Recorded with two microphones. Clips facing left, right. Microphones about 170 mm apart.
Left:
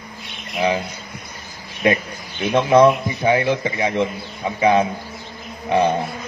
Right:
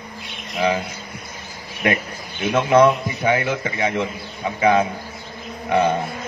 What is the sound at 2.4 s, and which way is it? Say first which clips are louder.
Speech: left 2 dB; 35° left (ahead or behind).